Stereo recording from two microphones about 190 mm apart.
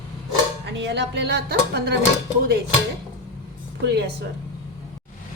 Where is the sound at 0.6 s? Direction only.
65° right (ahead or behind).